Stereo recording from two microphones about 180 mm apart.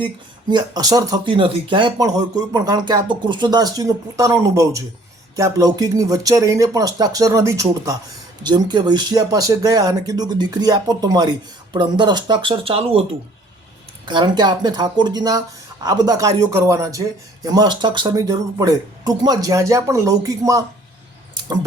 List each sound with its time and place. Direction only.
0.5 s speech: 20° right (ahead or behind)